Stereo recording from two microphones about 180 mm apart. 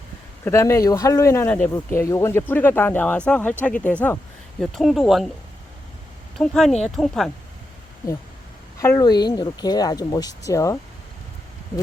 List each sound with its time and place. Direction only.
0.4 s speech: 15° left (ahead or behind); by 5.3 s centre (ahead or behind)
6.3 s speech: centre (ahead or behind)
8.8 s speech: 15° left (ahead or behind)